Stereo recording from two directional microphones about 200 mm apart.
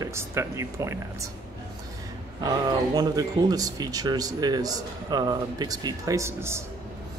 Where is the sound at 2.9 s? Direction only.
20° right (ahead or behind).